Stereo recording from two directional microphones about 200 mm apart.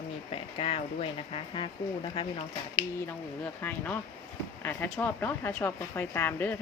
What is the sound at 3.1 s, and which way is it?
A woman's voice, 10° left (ahead or behind).